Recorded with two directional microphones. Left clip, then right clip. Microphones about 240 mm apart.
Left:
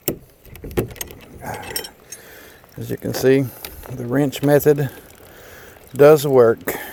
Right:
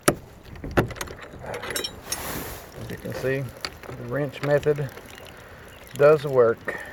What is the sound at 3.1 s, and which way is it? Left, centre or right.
Speech, left.